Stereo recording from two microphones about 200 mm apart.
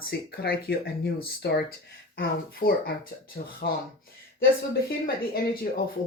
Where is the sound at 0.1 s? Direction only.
50° left (ahead or behind).